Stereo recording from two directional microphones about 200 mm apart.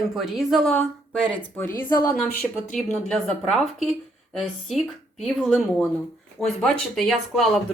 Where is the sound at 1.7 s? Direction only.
45° left (ahead or behind).